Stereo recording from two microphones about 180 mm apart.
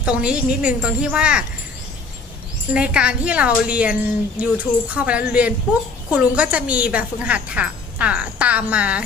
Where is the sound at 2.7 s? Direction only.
5° right (ahead or behind).